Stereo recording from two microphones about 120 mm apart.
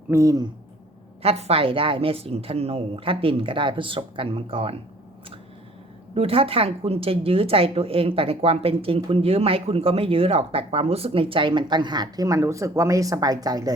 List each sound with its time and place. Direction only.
0.1 s speech: 30° right (ahead or behind)
1.2 s a woman's voice: 55° right (ahead or behind)
6.1 s a woman's voice: 55° right (ahead or behind); by 13.7 s 30° right (ahead or behind)